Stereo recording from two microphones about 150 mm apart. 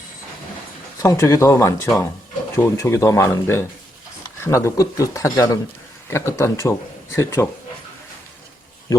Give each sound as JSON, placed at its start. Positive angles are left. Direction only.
{"t": 0.9, "sound": "speech", "side_deg": 20}